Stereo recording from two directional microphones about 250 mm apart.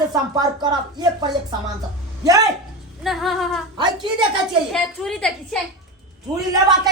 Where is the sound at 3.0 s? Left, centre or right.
Centre.